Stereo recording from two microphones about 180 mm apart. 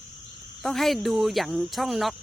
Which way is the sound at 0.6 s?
Centre (ahead or behind).